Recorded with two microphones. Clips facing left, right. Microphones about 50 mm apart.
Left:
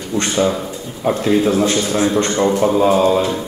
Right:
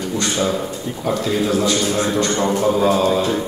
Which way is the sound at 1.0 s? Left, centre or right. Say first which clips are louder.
Left 5 dB; left.